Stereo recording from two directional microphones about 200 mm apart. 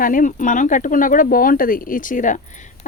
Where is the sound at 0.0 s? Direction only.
40° left (ahead or behind).